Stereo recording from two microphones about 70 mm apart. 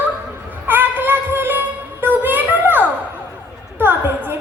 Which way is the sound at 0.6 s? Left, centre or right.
Right.